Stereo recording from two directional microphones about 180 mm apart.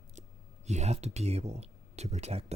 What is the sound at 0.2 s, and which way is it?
Speech, 40° right (ahead or behind).